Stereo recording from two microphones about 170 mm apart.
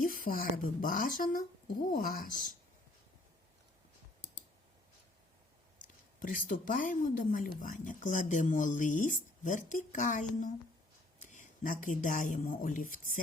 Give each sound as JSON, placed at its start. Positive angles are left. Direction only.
{"t": 0.0, "sound": "speech", "side_deg": 55}
{"t": 6.1, "sound": "speech", "side_deg": 50}